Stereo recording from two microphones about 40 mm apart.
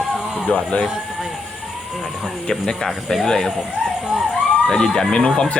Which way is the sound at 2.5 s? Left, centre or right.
Centre.